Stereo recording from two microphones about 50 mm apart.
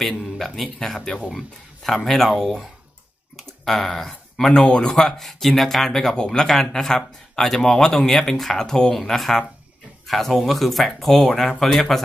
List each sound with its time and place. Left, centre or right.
0.6 s speech: centre